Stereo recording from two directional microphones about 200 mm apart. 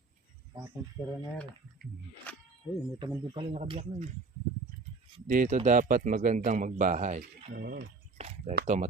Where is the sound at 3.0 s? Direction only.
25° right (ahead or behind).